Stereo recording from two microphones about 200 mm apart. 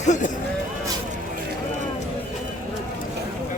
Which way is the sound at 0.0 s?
35° left (ahead or behind).